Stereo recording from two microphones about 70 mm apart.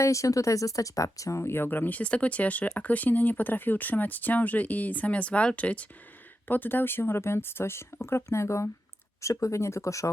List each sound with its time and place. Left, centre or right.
0.0 s speech: left